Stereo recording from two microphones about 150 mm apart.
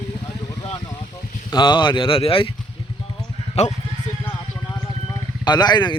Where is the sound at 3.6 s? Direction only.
45° left (ahead or behind).